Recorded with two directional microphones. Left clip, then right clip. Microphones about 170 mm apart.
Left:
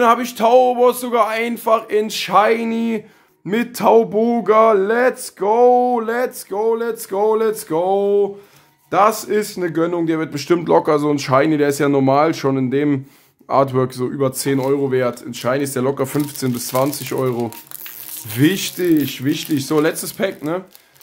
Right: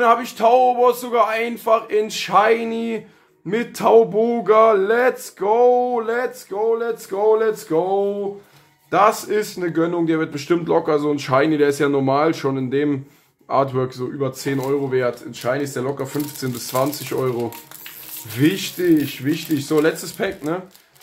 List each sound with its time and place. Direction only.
0.0 s speech: 40° left (ahead or behind)
8.9 s speech: 35° left (ahead or behind); by 16.4 s 60° left (ahead or behind)
16.4 s speech: 40° left (ahead or behind)